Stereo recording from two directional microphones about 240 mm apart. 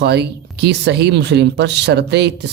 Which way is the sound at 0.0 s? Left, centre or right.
Right.